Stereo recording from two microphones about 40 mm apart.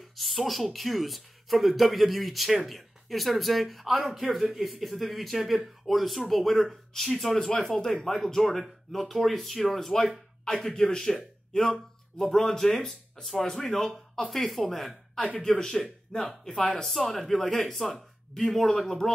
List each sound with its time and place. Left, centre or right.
0.1 s a man's voice: centre
15.3 s speech: centre
16.8 s speech: centre